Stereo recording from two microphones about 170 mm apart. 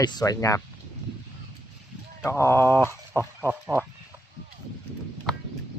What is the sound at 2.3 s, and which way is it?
Speech, 15° left (ahead or behind).